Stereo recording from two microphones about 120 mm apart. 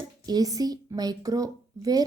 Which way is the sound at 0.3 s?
30° right (ahead or behind).